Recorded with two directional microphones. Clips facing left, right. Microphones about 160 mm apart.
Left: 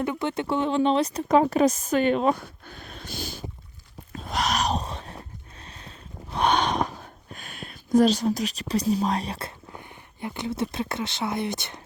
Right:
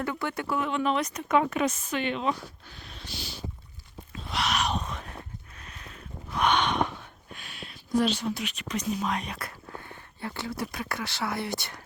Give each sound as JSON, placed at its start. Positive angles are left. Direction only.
{"t": 0.0, "sound": "a woman's voice", "side_deg": 20}
{"t": 4.1, "sound": "a sound", "side_deg": 45}
{"t": 7.9, "sound": "a woman's voice", "side_deg": 40}
{"t": 9.7, "sound": "speech", "side_deg": 15}